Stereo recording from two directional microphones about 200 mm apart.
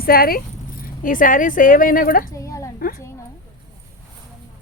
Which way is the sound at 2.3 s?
15° left (ahead or behind).